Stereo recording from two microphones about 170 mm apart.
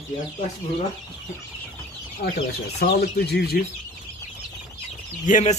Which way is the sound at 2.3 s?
75° left (ahead or behind).